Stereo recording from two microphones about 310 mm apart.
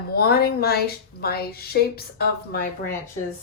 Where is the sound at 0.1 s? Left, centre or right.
Left.